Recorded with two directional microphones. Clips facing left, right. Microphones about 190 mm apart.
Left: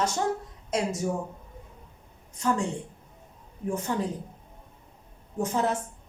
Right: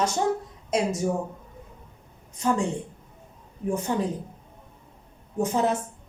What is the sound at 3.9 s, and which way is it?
Speech, 20° right (ahead or behind).